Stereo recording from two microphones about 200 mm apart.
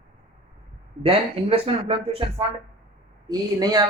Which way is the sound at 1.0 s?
30° right (ahead or behind).